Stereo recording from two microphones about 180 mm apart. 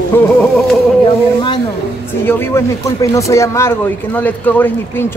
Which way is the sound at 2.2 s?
15° left (ahead or behind).